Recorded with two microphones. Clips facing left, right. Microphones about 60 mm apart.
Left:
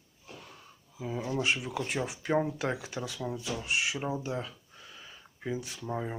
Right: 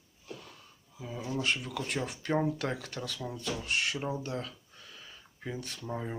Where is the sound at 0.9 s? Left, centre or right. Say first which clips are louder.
Left 3 dB; left.